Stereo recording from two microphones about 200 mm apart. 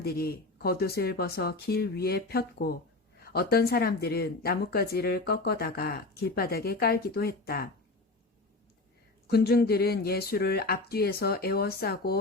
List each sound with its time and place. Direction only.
0.0 s speech: 50° left (ahead or behind)
9.2 s speech: 55° left (ahead or behind)